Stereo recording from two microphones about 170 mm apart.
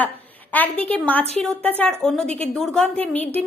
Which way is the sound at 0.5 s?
10° left (ahead or behind).